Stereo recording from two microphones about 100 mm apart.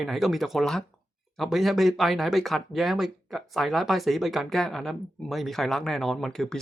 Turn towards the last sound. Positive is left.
turn(degrees=5)  # may be behind; listen again after turning